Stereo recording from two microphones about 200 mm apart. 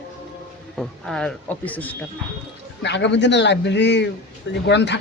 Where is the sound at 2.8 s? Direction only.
60° left (ahead or behind).